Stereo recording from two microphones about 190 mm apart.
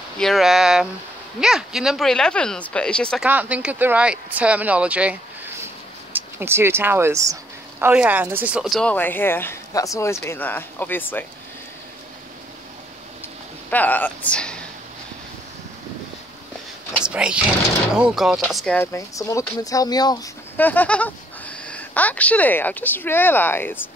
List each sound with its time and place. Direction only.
0.2 s speech: centre (ahead or behind)
3.3 s speech: 10° right (ahead or behind)
6.1 s speech: 10° right (ahead or behind); by 11.2 s 10° left (ahead or behind)
13.7 s speech: 10° left (ahead or behind)
17.0 s speech: 5° right (ahead or behind)
18.8 s speech: 15° left (ahead or behind)
20.5 s speech: 10° left (ahead or behind)